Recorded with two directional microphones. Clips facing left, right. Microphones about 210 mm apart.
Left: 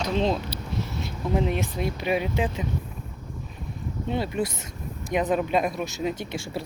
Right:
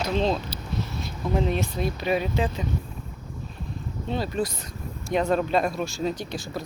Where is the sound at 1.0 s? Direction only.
15° left (ahead or behind).